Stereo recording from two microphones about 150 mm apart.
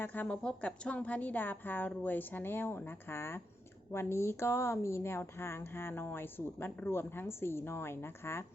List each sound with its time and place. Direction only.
0.0 s speech: 10° left (ahead or behind)